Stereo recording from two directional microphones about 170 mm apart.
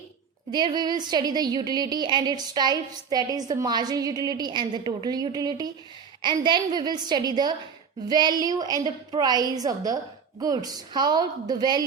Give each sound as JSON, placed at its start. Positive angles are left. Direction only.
{"t": 0.5, "sound": "a woman's voice", "side_deg": -25}